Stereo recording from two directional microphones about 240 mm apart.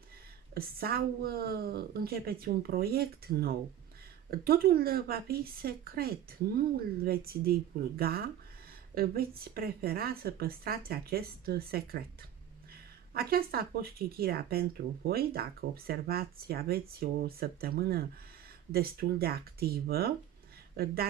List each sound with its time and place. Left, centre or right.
0.6 s speech: right
13.1 s speech: right